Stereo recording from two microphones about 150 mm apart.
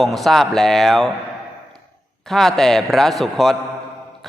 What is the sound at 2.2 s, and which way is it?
A man's voice, centre (ahead or behind).